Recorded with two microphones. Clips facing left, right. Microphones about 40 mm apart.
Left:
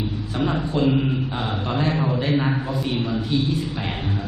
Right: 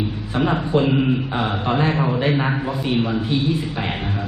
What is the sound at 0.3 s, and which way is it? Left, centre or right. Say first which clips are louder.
A man's voice: right 4 dB; right.